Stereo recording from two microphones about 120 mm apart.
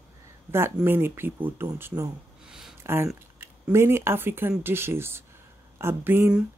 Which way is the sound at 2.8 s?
20° right (ahead or behind).